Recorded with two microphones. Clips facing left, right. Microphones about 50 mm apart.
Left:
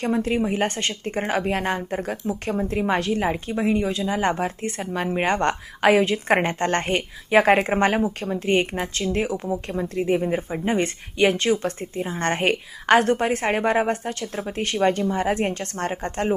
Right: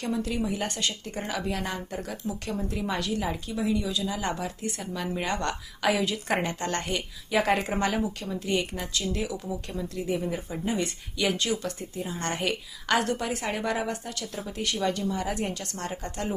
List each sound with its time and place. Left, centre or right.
0.0 s speech: left